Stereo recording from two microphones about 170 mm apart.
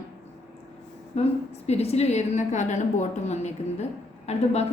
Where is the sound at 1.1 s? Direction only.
40° left (ahead or behind).